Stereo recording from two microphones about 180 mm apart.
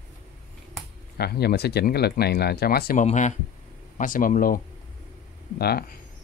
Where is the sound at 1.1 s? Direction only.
60° left (ahead or behind).